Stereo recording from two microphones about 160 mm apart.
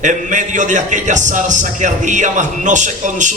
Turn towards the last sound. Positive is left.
turn(degrees=-50)  # may be behind; listen again after turning